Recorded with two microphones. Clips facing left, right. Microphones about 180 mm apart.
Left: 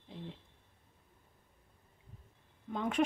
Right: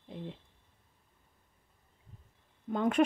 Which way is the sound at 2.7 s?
50° right (ahead or behind).